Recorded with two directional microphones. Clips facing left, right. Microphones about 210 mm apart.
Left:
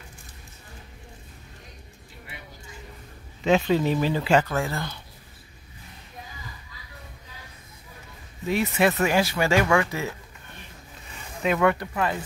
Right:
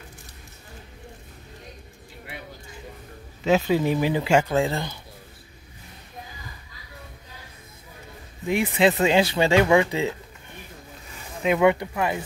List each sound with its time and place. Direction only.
3.4 s speech: 10° right (ahead or behind)
8.5 s speech: 15° right (ahead or behind)